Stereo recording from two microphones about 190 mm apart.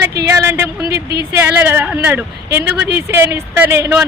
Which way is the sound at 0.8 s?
55° right (ahead or behind).